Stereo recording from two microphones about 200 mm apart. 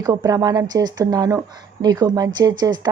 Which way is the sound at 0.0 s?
20° right (ahead or behind).